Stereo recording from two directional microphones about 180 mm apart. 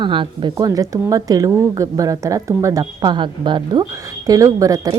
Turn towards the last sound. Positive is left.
turn(degrees=-20)  # may be behind; listen again after turning